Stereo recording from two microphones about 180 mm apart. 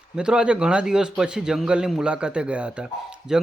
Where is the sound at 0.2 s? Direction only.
5° right (ahead or behind).